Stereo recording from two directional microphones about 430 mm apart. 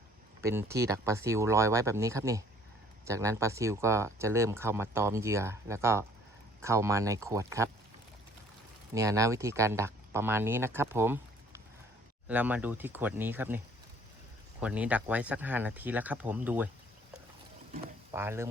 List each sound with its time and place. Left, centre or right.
0.4 s speech: centre
9.0 s speech: centre
14.6 s speech: centre
18.1 s speech: centre